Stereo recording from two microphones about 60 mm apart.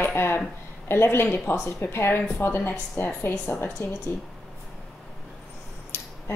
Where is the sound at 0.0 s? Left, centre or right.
Left.